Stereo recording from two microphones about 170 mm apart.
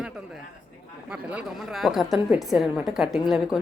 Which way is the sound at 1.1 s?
5° right (ahead or behind).